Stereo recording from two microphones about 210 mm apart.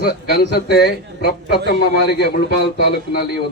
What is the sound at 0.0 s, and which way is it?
A man's voice, 50° left (ahead or behind).